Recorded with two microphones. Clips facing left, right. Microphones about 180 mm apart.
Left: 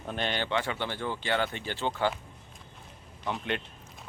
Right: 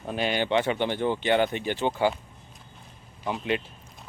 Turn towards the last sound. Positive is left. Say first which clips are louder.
# right 4 dB
turn(degrees=-5)  # may be behind; listen again after turning